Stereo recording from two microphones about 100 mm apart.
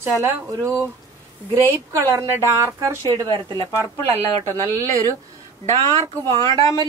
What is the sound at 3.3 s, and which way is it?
Speech, 50° right (ahead or behind).